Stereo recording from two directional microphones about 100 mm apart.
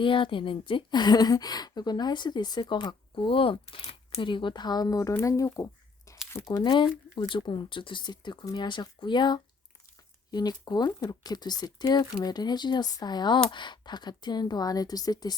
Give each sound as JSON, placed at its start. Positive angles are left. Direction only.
{"t": 0.0, "sound": "a woman's voice", "side_deg": 55}